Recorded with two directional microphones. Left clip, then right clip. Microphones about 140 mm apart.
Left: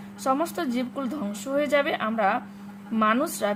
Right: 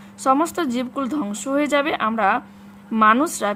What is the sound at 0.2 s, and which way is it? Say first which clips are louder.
A woman's voice: right 7 dB; 45° right (ahead or behind).